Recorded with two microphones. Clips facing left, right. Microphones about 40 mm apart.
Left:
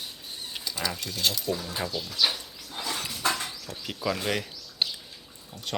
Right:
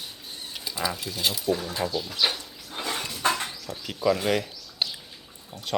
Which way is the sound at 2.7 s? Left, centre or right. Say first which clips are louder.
Right 2 dB; right.